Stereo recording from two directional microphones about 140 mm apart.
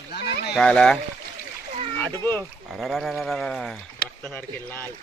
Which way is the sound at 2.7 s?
Centre (ahead or behind).